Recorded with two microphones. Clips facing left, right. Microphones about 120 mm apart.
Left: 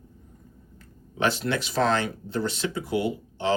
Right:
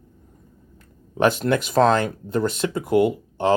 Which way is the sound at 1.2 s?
50° right (ahead or behind).